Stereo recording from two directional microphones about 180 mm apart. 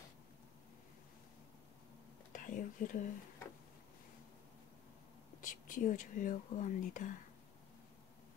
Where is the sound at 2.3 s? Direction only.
45° left (ahead or behind).